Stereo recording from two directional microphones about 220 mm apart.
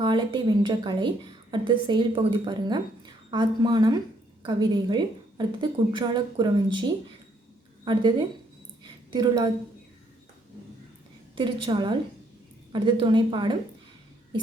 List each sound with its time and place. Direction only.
0.0 s a woman's voice: 20° right (ahead or behind)
9.0 s a woman's voice: 20° right (ahead or behind)
11.3 s a woman's voice: 20° right (ahead or behind)